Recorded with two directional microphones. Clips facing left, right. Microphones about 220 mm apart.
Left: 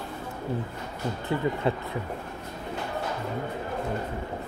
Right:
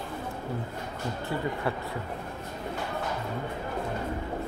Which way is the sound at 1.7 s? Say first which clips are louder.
Left 5 dB; 20° left (ahead or behind).